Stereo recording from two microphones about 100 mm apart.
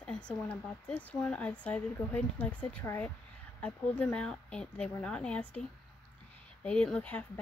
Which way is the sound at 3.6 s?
10° left (ahead or behind).